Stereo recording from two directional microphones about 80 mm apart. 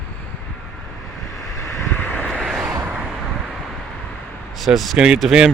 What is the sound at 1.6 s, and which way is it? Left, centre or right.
Vehicle, left.